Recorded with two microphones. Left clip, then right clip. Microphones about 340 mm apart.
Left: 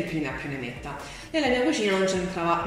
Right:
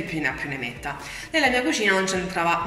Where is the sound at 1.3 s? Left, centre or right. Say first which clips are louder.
Right 3 dB; right.